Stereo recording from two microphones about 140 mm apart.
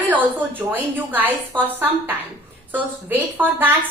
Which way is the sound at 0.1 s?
10° right (ahead or behind).